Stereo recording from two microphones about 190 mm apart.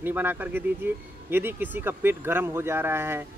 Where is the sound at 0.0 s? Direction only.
10° right (ahead or behind).